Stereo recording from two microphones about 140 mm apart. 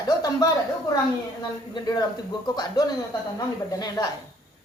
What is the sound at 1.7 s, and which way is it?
A woman's voice, 30° left (ahead or behind).